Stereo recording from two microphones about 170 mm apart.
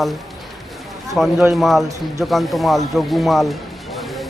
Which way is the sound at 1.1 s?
Centre (ahead or behind).